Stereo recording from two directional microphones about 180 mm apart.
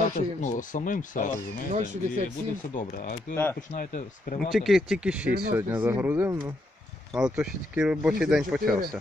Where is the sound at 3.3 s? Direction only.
10° left (ahead or behind).